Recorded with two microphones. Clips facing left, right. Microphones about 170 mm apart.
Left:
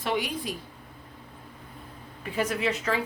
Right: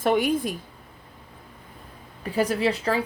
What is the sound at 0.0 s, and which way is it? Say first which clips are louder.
Speech: right 8 dB; 50° right (ahead or behind).